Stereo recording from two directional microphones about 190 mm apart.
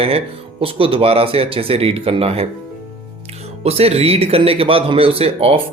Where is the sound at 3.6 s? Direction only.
30° right (ahead or behind).